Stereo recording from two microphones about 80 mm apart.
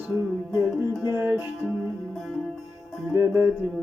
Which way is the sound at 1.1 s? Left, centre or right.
Right.